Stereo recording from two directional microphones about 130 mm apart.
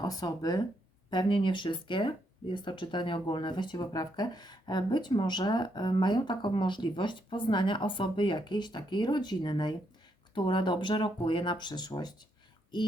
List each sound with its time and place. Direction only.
0.0 s speech: 30° left (ahead or behind)